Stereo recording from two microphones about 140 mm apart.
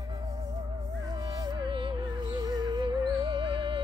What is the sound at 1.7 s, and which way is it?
Music, 35° right (ahead or behind).